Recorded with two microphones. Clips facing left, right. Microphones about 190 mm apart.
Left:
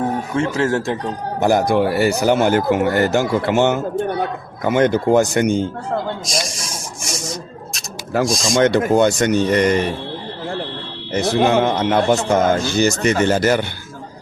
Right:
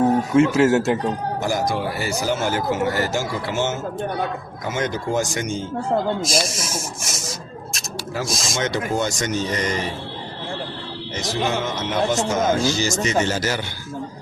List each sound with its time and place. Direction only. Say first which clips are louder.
0.0 s speech: right 4 dB; 5° right (ahead or behind)
1.4 s speech: left 11 dB; 60° left (ahead or behind)
6.2 s rub: right 2 dB; centre (ahead or behind)
8.3 s speech: left 7 dB; centre (ahead or behind)
8.5 s speech: left 9 dB; 55° left (ahead or behind)
11.1 s speech: left 8 dB; 60° left (ahead or behind)